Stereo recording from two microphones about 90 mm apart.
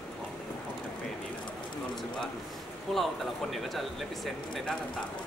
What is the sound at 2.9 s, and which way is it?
Speech, 5° left (ahead or behind).